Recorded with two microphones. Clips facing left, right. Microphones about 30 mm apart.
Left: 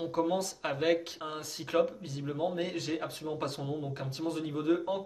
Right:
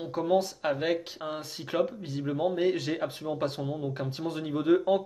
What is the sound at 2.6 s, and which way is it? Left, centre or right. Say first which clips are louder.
Speech: right 8 dB; right.